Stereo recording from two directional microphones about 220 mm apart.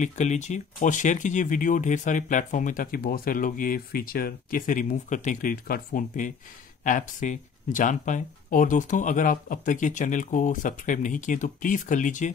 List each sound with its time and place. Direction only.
0.0 s speech: 30° left (ahead or behind)